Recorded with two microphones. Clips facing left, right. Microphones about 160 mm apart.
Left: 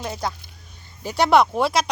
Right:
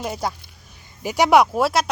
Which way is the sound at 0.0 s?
5° right (ahead or behind).